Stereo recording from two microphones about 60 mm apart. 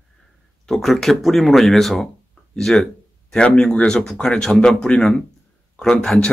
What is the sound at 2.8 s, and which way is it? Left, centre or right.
Speech, centre.